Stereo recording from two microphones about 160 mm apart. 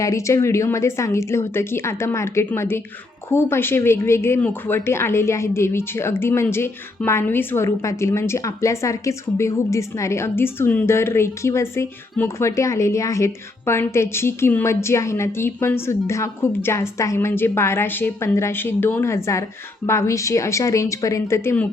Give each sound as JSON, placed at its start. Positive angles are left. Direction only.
{"t": 0.0, "sound": "a woman's voice", "side_deg": 20}